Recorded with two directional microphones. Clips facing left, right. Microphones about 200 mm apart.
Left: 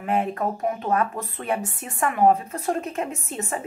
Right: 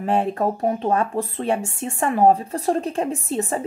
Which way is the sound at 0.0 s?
30° right (ahead or behind).